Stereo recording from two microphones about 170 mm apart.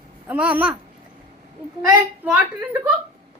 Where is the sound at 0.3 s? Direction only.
10° right (ahead or behind).